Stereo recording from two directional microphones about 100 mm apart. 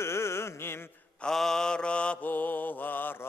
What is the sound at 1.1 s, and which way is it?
Mantra, 5° left (ahead or behind).